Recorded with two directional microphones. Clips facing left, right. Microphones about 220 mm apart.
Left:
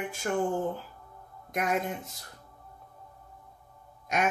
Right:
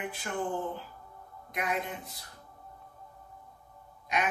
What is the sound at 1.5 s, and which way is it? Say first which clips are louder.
Speech: left 4 dB; 45° left (ahead or behind).